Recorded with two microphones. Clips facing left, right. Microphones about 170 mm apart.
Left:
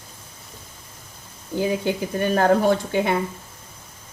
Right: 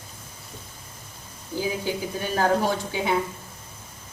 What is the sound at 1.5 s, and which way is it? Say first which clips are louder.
Speech: left 5 dB; 60° left (ahead or behind).